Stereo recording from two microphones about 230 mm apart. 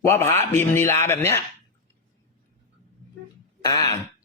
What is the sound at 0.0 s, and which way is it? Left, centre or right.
Speech, centre.